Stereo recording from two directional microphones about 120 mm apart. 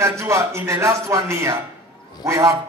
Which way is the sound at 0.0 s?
25° right (ahead or behind).